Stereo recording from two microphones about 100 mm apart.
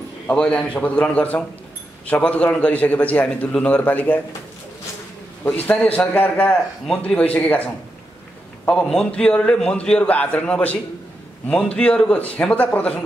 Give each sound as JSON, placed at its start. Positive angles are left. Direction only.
{"t": 0.3, "sound": "a man's voice", "side_deg": 10}
{"t": 5.4, "sound": "a man's voice", "side_deg": 15}
{"t": 8.6, "sound": "a man's voice", "side_deg": 10}